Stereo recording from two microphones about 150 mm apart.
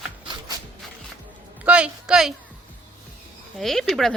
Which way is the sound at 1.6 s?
5° right (ahead or behind).